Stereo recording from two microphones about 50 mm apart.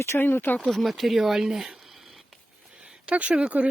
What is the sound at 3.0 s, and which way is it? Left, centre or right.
Speech, right.